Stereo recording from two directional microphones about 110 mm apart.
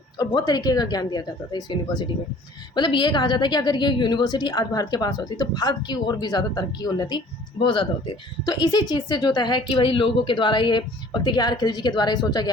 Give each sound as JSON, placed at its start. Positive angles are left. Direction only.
{"t": 0.2, "sound": "speech", "side_deg": 35}